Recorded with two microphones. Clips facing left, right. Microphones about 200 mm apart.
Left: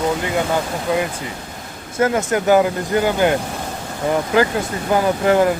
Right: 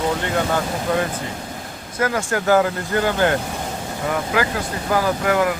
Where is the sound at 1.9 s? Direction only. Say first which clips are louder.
Left 4 dB; 25° left (ahead or behind).